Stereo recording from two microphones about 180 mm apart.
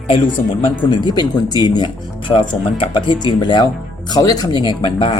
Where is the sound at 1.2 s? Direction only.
25° left (ahead or behind).